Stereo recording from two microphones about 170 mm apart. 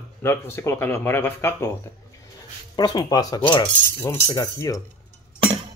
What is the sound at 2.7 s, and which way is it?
Speech, 25° left (ahead or behind).